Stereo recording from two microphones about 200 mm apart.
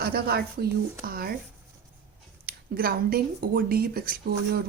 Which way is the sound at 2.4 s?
45° right (ahead or behind).